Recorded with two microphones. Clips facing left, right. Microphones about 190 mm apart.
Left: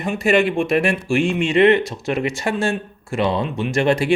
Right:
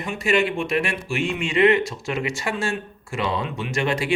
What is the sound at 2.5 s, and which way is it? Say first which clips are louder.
Speech: left 6 dB; 45° left (ahead or behind).